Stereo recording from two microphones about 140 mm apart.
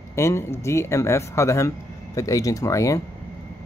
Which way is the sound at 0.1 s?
20° left (ahead or behind).